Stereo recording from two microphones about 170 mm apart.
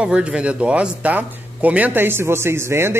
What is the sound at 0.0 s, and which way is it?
Speech, 5° right (ahead or behind).